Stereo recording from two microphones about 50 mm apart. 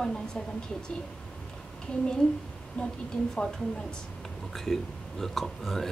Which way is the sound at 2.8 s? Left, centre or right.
Left.